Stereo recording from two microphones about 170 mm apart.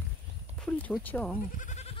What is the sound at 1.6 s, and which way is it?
Goat, 40° left (ahead or behind).